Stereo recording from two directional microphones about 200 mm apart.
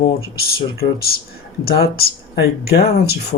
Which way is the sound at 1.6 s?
50° left (ahead or behind).